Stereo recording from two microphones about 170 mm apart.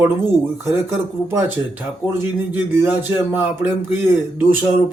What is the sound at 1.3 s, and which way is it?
A man's voice, 10° right (ahead or behind).